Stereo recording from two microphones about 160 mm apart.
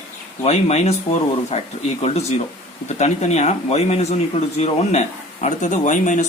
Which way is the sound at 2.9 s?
45° left (ahead or behind).